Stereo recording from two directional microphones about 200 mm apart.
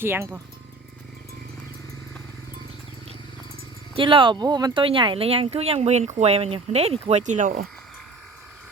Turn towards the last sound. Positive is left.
turn(degrees=-40)  # may be behind; listen again after turning